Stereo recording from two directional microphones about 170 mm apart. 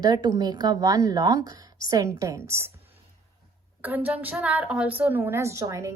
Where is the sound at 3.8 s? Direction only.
10° right (ahead or behind).